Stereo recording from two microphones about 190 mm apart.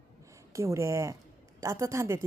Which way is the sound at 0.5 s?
15° right (ahead or behind).